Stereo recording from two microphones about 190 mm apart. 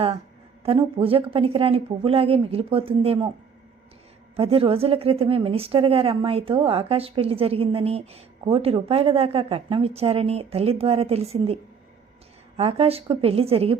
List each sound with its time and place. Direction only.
0.6 s speech: 30° right (ahead or behind)
4.4 s a woman's voice: 30° right (ahead or behind)
12.5 s a woman's voice: 30° right (ahead or behind)